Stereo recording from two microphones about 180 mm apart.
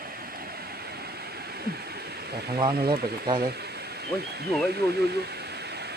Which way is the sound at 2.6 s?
25° right (ahead or behind).